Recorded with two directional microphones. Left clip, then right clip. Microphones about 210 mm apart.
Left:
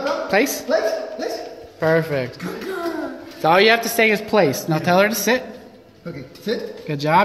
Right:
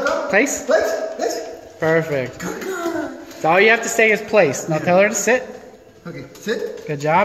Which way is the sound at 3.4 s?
15° left (ahead or behind).